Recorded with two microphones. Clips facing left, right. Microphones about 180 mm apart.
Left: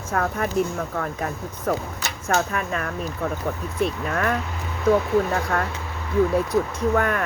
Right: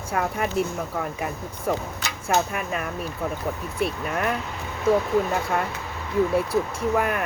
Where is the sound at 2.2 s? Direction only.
10° right (ahead or behind).